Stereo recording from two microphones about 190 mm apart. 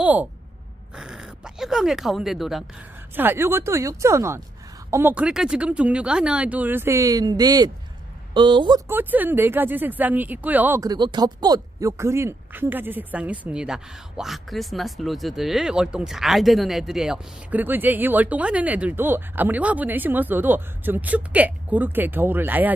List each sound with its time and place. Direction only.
0.0 s speech: 10° right (ahead or behind)
3.2 s speech: 10° right (ahead or behind)
8.8 s speech: 10° right (ahead or behind)